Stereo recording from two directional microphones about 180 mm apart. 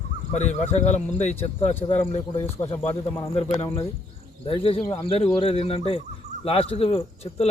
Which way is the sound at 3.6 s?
30° left (ahead or behind).